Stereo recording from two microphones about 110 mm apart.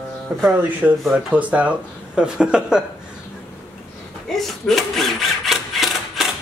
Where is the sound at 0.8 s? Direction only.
15° right (ahead or behind).